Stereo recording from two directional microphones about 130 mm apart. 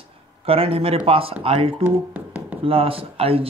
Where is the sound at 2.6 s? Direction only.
45° right (ahead or behind).